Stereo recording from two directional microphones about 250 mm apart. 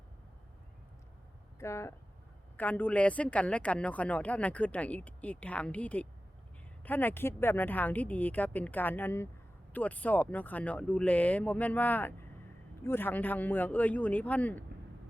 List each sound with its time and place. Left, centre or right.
1.5 s a woman's voice: centre